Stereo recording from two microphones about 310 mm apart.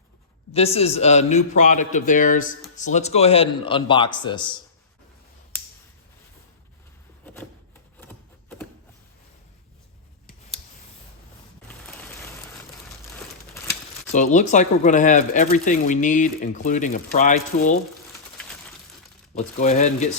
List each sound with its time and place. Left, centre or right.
0.5 s a man's voice: centre
5.5 s finger snapping: centre
8.0 s a sound: centre
11.7 s rain: centre
14.1 s speech: left
19.3 s speech: left